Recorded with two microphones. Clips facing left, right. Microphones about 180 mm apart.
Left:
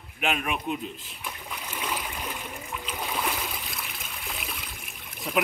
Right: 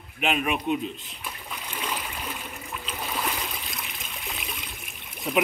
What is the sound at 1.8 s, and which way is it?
Stream, 10° left (ahead or behind).